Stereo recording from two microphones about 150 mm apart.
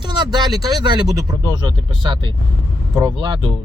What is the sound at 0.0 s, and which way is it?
Speech, 30° right (ahead or behind).